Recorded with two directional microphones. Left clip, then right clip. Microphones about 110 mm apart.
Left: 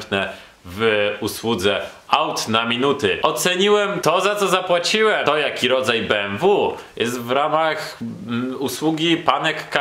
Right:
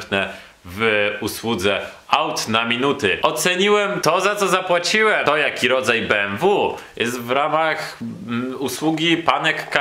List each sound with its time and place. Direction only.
0.1 s speech: centre (ahead or behind)